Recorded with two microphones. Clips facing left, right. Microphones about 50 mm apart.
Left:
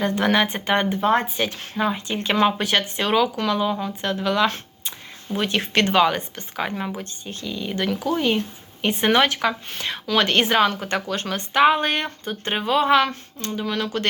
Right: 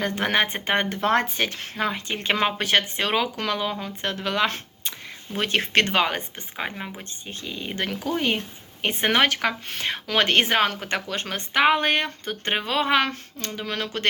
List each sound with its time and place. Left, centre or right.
0.0 s speech: right
1.0 s speech: right
1.4 s speech: right
6.3 s speech: centre
7.4 s speech: right